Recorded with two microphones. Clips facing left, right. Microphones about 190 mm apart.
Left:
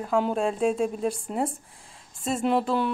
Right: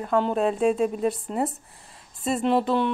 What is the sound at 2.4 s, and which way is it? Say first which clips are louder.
Speech: right 2 dB; centre (ahead or behind).